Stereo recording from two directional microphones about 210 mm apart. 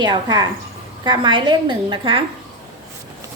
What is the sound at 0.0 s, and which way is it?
A woman's voice, 20° right (ahead or behind).